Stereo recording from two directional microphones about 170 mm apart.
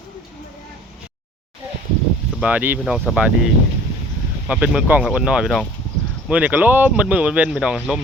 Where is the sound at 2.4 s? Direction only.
10° right (ahead or behind).